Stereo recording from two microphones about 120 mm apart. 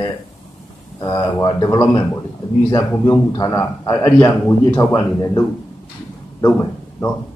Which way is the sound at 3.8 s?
25° left (ahead or behind).